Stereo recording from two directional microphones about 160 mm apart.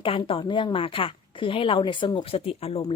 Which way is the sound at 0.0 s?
35° left (ahead or behind).